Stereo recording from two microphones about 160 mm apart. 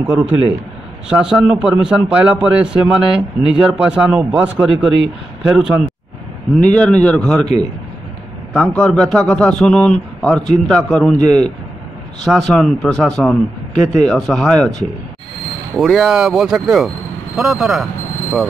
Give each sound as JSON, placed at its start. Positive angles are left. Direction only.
{"t": 0.0, "sound": "a man's voice", "side_deg": -10}
{"t": 6.5, "sound": "a man's voice", "side_deg": 5}
{"t": 8.7, "sound": "a man's voice", "side_deg": 5}